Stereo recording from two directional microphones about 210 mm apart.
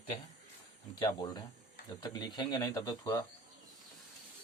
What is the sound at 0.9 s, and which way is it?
Speech, 20° left (ahead or behind).